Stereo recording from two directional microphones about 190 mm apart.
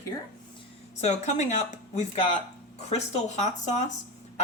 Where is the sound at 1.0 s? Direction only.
35° left (ahead or behind).